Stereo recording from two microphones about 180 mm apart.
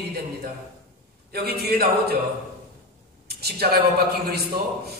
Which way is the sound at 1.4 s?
60° right (ahead or behind).